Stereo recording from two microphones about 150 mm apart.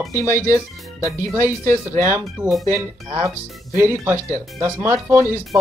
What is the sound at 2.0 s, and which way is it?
Speech, 15° right (ahead or behind).